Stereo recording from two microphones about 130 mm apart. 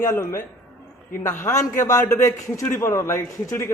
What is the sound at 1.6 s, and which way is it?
A man's voice, 25° left (ahead or behind).